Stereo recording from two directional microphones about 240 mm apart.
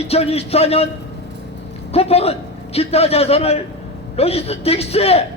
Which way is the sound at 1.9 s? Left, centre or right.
Left.